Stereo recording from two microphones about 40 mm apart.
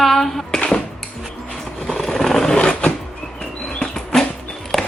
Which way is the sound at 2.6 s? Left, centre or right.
Left.